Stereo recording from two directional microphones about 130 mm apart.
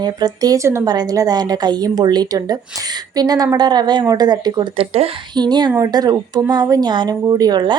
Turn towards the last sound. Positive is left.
turn(degrees=-35)  # may be behind; listen again after turning